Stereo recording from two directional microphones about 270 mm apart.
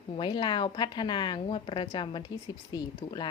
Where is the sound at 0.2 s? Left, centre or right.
Centre.